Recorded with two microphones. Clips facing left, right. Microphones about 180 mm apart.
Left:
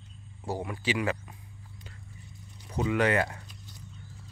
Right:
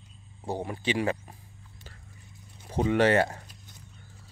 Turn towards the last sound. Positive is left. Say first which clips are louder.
# right 3 dB
turn(degrees=-40)  # may be behind; listen again after turning